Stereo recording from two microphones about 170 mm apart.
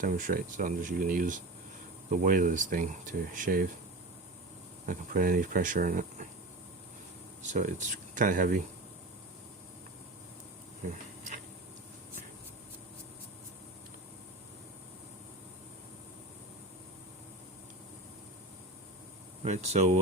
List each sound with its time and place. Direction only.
0.0 s speech: 50° right (ahead or behind)
4.9 s speech: 55° right (ahead or behind)
7.4 s speech: 45° right (ahead or behind)
10.8 s insect: 50° right (ahead or behind)
19.5 s speech: 45° right (ahead or behind)